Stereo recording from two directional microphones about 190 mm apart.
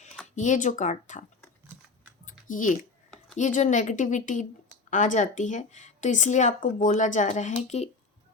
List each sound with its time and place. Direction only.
0.3 s speech: 40° left (ahead or behind)
2.2 s a sound: 45° left (ahead or behind)
3.3 s speech: 40° left (ahead or behind)